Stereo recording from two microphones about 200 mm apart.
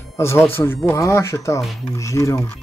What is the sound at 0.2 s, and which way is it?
Speech, 15° left (ahead or behind).